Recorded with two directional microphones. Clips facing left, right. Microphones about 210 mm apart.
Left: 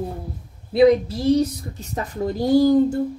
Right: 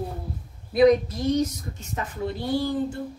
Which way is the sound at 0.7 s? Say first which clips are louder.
Left 3 dB; 30° left (ahead or behind).